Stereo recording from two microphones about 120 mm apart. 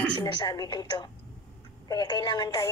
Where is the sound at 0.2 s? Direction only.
35° left (ahead or behind).